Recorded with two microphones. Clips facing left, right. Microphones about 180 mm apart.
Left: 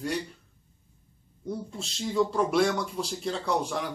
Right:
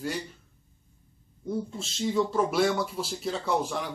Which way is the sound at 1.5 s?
Centre (ahead or behind).